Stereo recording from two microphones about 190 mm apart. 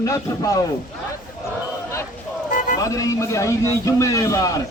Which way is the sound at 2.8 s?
15° left (ahead or behind).